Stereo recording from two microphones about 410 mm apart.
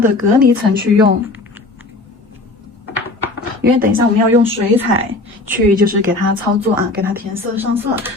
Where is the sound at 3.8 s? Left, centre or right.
Centre.